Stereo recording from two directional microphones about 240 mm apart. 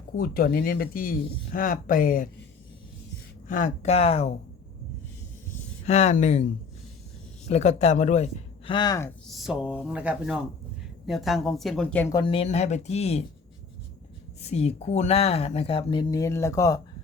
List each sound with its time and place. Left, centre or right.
0.2 s speech: left
3.5 s speech: left
5.8 s speech: left
7.4 s speech: left; by 12.0 s centre
12.1 s speech: left
14.4 s speech: left